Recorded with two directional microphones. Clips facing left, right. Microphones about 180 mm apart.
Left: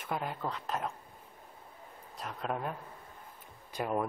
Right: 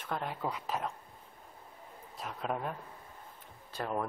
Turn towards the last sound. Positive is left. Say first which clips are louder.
# left 2 dB
turn(degrees=10)  # may be behind; listen again after turning